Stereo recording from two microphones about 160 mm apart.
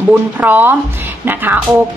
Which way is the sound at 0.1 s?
10° right (ahead or behind).